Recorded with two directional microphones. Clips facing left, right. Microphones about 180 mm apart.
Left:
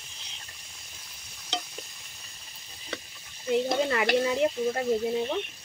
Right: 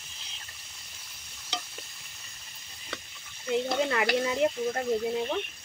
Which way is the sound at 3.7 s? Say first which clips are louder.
Left 2 dB; centre (ahead or behind).